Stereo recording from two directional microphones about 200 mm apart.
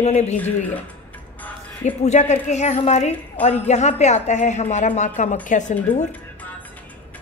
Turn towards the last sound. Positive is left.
turn(degrees=40)  # may be behind; listen again after turning